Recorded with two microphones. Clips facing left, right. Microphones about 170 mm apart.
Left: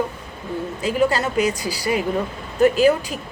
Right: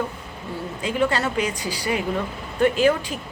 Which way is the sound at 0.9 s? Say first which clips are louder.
Left 3 dB; 10° left (ahead or behind).